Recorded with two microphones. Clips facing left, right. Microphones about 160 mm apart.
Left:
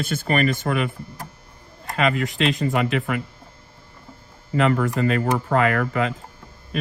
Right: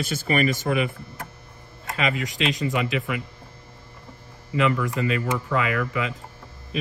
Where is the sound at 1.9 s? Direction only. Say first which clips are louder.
Left 4 dB; 45° left (ahead or behind).